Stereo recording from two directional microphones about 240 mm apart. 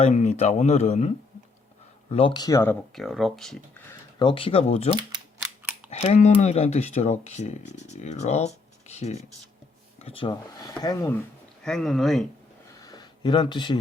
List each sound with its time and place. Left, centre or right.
0.0 s speech: left; by 2.7 s centre
2.9 s speech: centre
4.2 s speech: left
11.6 s speech: centre
12.8 s a sound: centre